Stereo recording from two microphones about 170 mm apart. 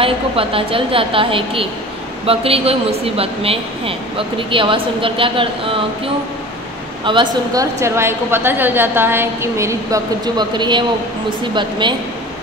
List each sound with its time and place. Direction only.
0.0 s a woman's voice: 30° right (ahead or behind)
7.1 s speech: 30° right (ahead or behind)
7.5 s a woman's voice: 15° right (ahead or behind)